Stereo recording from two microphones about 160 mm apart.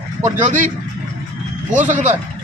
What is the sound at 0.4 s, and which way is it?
Speech, 50° right (ahead or behind).